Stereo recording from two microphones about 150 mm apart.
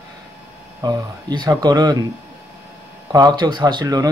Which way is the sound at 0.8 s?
25° right (ahead or behind).